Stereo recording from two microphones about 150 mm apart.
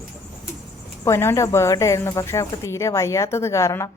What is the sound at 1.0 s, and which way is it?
A woman's voice, 15° left (ahead or behind).